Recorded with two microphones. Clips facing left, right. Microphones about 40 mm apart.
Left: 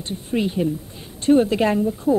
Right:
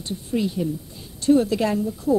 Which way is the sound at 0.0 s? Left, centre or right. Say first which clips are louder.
Left 2 dB; left.